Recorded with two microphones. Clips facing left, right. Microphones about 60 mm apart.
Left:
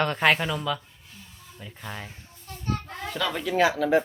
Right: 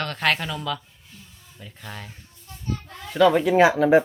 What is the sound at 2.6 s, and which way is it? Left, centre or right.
Children playing, left.